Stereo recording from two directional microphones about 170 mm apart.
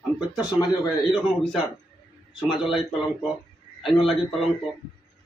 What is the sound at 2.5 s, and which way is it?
Speech, 5° right (ahead or behind).